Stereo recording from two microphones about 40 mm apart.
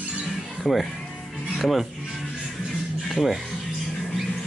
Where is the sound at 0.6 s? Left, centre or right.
Centre.